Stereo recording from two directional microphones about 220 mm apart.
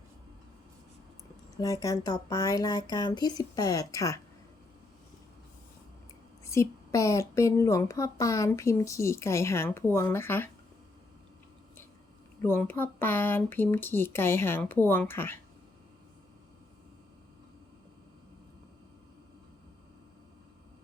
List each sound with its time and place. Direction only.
1.6 s a woman's voice: 15° left (ahead or behind)
6.4 s a woman's voice: 15° left (ahead or behind)
12.4 s a woman's voice: 10° left (ahead or behind)